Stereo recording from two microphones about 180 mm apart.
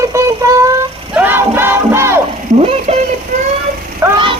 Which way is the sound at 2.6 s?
35° right (ahead or behind).